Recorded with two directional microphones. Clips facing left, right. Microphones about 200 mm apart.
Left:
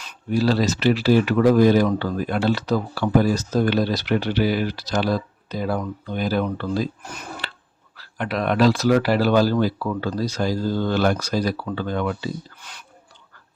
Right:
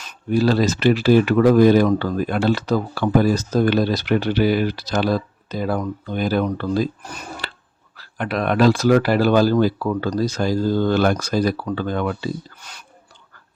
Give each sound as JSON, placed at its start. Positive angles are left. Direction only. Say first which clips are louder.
{"t": 0.0, "sound": "speech", "louder": "right 3 dB", "side_deg": -50}
{"t": 7.9, "sound": "speech", "louder": "right 2 dB", "side_deg": -50}